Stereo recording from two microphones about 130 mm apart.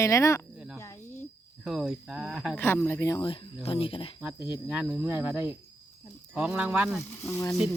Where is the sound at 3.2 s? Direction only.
45° left (ahead or behind).